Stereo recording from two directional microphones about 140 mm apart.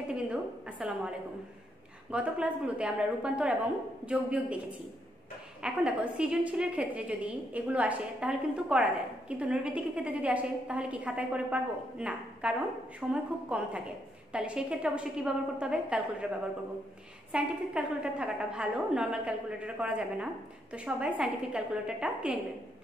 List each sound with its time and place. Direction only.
0.1 s a woman's voice: 10° right (ahead or behind)
17.3 s a woman's voice: 10° right (ahead or behind)